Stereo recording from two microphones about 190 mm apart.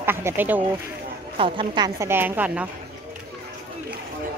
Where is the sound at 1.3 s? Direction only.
25° right (ahead or behind); by 2.6 s 10° right (ahead or behind).